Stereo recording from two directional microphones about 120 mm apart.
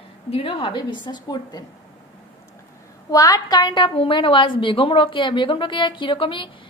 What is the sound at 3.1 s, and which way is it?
A woman's voice, 30° left (ahead or behind).